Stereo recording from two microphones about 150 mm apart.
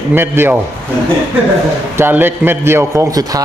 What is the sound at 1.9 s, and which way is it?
A man's voice, 15° right (ahead or behind).